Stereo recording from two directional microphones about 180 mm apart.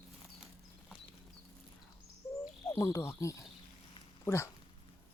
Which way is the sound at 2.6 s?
15° left (ahead or behind).